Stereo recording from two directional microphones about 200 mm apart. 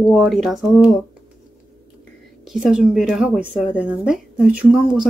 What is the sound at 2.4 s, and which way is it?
Speech, 5° right (ahead or behind).